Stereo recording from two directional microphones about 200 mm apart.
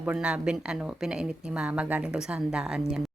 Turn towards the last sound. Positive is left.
turn(degrees=-5)  # may be behind; listen again after turning